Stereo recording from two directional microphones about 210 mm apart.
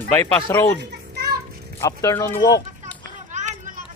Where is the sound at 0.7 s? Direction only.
50° right (ahead or behind).